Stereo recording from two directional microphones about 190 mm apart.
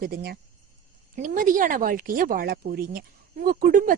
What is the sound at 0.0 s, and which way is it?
Speech, 55° right (ahead or behind).